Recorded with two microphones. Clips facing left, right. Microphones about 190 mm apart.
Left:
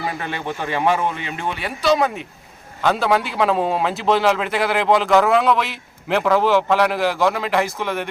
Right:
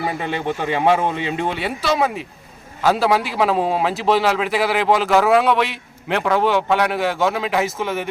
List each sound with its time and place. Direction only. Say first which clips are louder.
0.1 s speech: right 4 dB; 25° right (ahead or behind)
1.8 s a man's voice: left 3 dB; centre (ahead or behind)